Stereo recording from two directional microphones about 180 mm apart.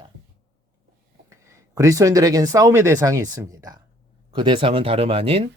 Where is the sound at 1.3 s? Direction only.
15° right (ahead or behind).